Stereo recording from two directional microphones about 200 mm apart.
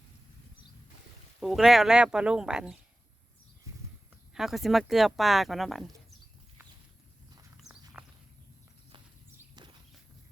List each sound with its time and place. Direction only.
1.4 s speech: centre (ahead or behind)
4.4 s speech: centre (ahead or behind)
7.6 s walk: 5° right (ahead or behind)
9.6 s walk: 20° right (ahead or behind)